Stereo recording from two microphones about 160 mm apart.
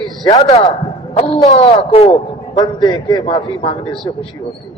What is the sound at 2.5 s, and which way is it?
A man's voice, 25° left (ahead or behind).